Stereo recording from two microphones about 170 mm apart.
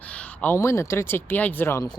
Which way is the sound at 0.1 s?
10° left (ahead or behind).